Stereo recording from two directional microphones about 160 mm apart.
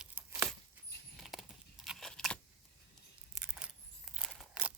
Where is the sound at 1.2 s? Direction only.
Centre (ahead or behind).